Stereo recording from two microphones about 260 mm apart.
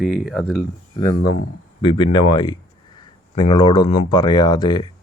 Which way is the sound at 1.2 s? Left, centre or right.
Left.